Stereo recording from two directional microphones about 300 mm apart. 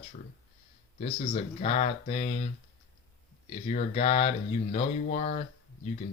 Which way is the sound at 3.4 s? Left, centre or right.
Left.